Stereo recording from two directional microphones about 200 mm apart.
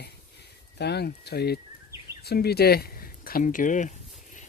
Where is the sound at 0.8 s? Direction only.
55° left (ahead or behind).